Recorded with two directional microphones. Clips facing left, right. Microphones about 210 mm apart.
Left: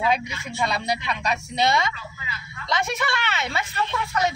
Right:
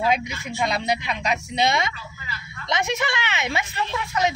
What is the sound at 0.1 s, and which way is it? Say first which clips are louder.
Speech: right 1 dB; 20° right (ahead or behind).